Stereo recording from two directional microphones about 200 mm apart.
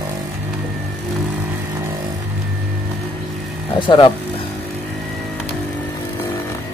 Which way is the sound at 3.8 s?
25° left (ahead or behind).